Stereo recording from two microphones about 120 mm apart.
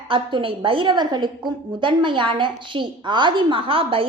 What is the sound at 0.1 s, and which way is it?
A woman's voice, 45° right (ahead or behind).